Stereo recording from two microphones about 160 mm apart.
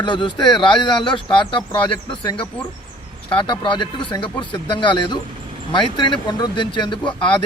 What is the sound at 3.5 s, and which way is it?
Speech, 30° left (ahead or behind).